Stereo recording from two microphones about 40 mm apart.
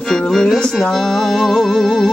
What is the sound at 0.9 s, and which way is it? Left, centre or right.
Speech, centre.